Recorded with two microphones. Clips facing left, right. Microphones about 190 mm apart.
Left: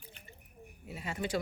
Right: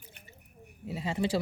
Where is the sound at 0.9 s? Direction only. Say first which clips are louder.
Right 5 dB; 30° right (ahead or behind).